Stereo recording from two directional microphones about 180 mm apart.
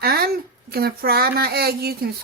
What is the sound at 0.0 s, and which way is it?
Speech, 60° right (ahead or behind).